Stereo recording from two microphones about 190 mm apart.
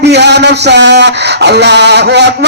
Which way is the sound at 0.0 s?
65° right (ahead or behind).